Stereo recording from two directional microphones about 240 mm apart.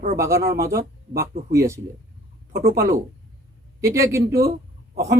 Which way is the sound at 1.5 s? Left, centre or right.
Centre.